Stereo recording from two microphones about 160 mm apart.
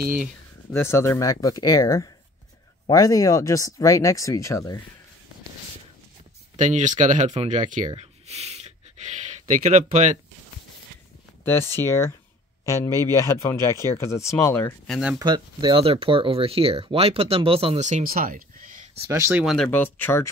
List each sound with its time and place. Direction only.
0.7 s speech: 15° left (ahead or behind)
6.5 s speech: 50° right (ahead or behind)
11.4 s speech: 15° left (ahead or behind)
14.9 s speech: 5° right (ahead or behind)
15.1 s speech: 25° right (ahead or behind); by 18.9 s 55° right (ahead or behind)
19.0 s speech: 15° right (ahead or behind)
19.4 s speech: 5° left (ahead or behind)